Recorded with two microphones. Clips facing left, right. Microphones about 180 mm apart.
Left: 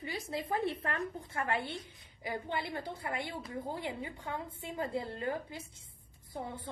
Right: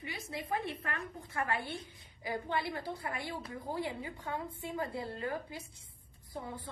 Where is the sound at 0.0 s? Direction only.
30° left (ahead or behind).